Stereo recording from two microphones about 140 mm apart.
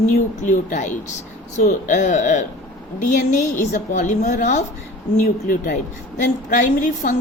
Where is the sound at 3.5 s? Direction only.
65° left (ahead or behind).